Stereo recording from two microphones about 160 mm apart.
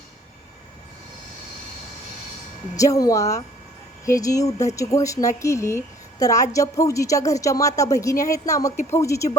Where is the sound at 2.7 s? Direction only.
20° left (ahead or behind).